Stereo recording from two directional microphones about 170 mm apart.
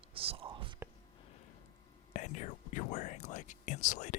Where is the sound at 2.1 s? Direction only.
45° left (ahead or behind).